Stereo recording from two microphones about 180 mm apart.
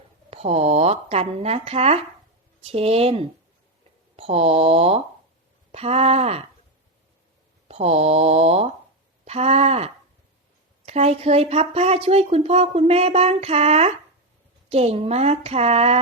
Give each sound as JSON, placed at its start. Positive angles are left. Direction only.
{"t": 0.3, "sound": "speech", "side_deg": -35}
{"t": 7.7, "sound": "speech", "side_deg": -35}